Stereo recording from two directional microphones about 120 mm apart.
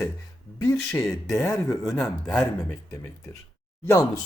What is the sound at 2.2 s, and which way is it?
Speech, 10° left (ahead or behind).